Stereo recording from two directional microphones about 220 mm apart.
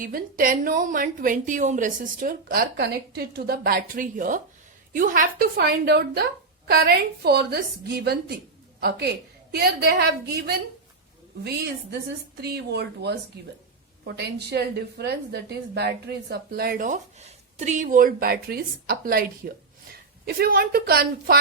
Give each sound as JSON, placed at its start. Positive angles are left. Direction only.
{"t": 0.0, "sound": "a woman's voice", "side_deg": -40}